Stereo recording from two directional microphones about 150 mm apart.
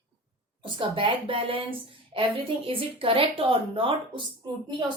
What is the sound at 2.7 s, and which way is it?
A woman's voice, 40° right (ahead or behind).